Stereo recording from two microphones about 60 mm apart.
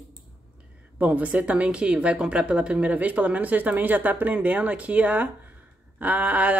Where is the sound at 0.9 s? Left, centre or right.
Right.